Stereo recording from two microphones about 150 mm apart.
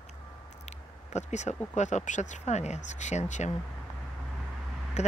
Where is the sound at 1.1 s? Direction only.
50° left (ahead or behind).